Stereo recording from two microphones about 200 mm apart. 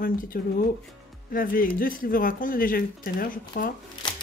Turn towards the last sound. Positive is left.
turn(degrees=25)  # may be behind; listen again after turning